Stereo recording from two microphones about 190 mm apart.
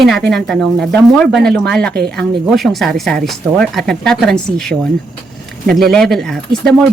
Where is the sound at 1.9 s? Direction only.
55° right (ahead or behind).